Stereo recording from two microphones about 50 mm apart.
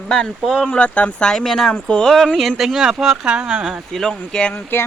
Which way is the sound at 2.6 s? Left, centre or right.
Centre.